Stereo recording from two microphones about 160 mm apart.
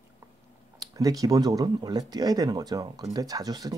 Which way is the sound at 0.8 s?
20° right (ahead or behind).